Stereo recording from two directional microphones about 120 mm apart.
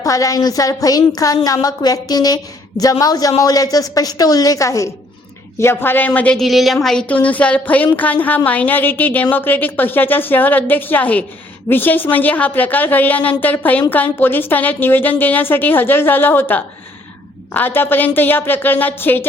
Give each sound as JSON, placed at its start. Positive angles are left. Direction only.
{"t": 0.0, "sound": "a woman's voice", "side_deg": 30}
{"t": 6.4, "sound": "a woman's voice", "side_deg": 0}